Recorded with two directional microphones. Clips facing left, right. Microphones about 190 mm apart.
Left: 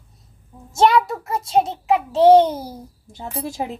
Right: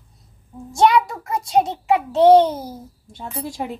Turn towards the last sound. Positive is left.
turn(degrees=25)  # may be behind; listen again after turning